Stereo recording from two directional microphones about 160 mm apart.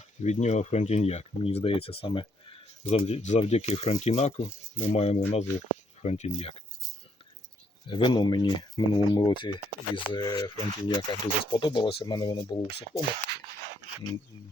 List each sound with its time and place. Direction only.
0.2 s speech: 45° left (ahead or behind)
7.9 s speech: 30° left (ahead or behind)